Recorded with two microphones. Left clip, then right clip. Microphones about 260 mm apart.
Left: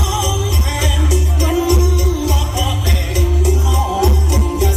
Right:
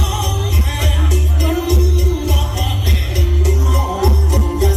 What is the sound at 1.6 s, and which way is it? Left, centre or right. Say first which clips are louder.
Music: left 3 dB; centre.